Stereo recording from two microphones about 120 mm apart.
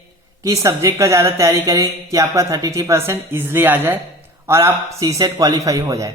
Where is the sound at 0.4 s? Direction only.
30° right (ahead or behind).